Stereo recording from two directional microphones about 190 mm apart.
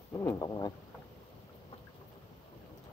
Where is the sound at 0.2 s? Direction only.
15° left (ahead or behind).